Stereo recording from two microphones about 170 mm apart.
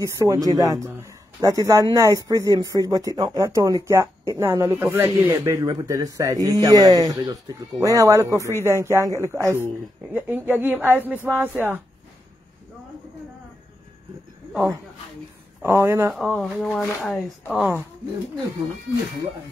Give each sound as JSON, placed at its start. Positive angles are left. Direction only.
{"t": 0.0, "sound": "speech", "side_deg": -20}
{"t": 15.6, "sound": "speech", "side_deg": -15}
{"t": 16.1, "sound": "speech", "side_deg": 0}